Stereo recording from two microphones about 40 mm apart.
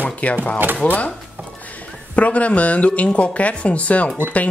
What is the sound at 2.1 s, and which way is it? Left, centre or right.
Speech, left.